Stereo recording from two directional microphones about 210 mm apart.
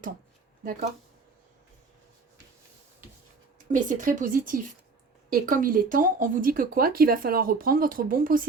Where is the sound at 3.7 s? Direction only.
40° right (ahead or behind).